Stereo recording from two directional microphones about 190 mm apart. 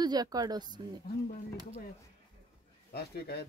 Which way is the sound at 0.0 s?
20° right (ahead or behind).